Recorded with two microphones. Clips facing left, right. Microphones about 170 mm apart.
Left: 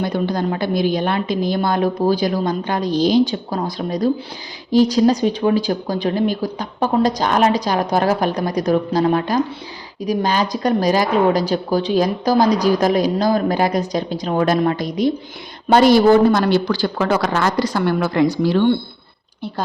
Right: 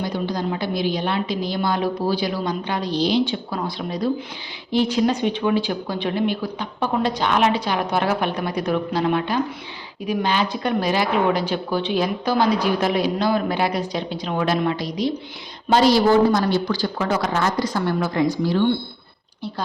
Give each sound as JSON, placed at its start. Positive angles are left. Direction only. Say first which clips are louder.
{"t": 0.0, "sound": "a woman's voice", "louder": "left 4 dB", "side_deg": 55}